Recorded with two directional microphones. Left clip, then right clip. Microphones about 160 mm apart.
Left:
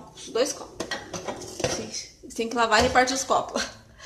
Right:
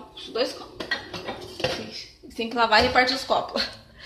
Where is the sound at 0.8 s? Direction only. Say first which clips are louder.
Right 5 dB; 60° left (ahead or behind).